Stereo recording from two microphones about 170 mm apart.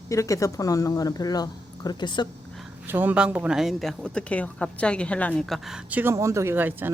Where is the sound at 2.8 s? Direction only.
10° right (ahead or behind).